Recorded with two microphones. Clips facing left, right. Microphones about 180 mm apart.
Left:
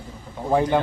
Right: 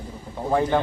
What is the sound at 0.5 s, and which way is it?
Speech, 15° left (ahead or behind).